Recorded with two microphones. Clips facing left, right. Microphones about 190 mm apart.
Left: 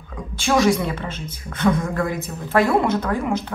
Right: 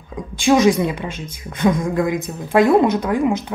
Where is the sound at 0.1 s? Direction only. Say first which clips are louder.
Right 5 dB; 15° right (ahead or behind).